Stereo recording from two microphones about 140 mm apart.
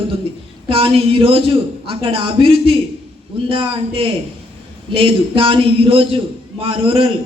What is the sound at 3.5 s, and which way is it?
A woman's voice, 40° right (ahead or behind).